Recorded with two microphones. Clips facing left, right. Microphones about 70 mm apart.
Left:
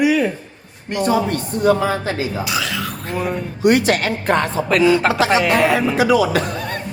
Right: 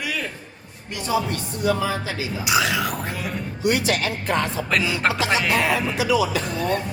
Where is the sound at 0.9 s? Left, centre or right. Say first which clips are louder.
Left 6 dB; left.